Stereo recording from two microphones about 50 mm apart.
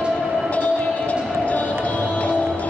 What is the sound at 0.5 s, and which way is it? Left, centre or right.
Train, left.